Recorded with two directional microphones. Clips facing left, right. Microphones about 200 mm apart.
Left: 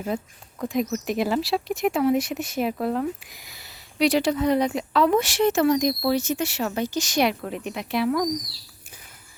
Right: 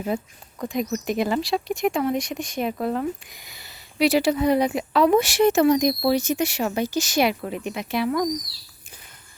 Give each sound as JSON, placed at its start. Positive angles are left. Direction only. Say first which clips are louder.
{"t": 0.6, "sound": "speech", "louder": "left 1 dB", "side_deg": 0}